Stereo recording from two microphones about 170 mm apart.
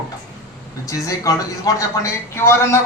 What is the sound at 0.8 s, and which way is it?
Speech, 20° left (ahead or behind).